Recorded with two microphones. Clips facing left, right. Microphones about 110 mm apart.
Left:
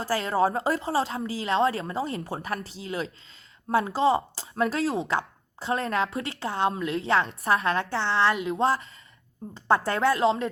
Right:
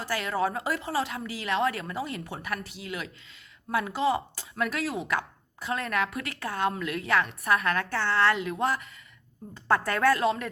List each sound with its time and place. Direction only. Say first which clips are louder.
0.0 s a woman's voice: left 4 dB; 30° left (ahead or behind)